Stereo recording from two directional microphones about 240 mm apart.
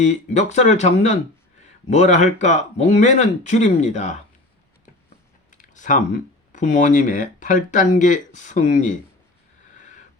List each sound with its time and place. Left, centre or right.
0.0 s speech: left
5.5 s speech: left